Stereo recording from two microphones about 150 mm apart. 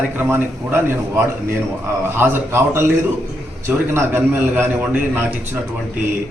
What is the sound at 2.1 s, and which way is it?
A man's voice, 15° right (ahead or behind).